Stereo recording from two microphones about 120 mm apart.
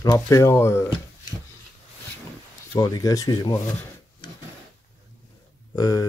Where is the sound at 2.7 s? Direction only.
35° left (ahead or behind).